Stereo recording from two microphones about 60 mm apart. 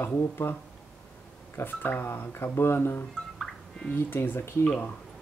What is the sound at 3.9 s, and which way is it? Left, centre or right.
Speech, left.